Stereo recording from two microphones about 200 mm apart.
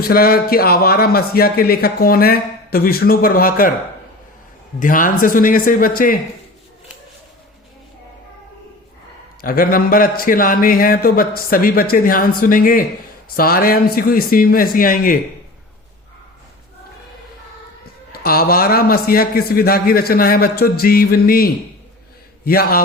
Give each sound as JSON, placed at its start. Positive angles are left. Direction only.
{"t": 0.0, "sound": "a man's voice", "side_deg": 50}
{"t": 4.8, "sound": "a man's voice", "side_deg": 40}
{"t": 9.4, "sound": "a man's voice", "side_deg": 45}
{"t": 18.1, "sound": "a man's voice", "side_deg": 50}